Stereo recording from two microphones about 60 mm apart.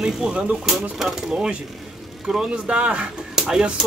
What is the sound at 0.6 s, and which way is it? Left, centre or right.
Speech, centre.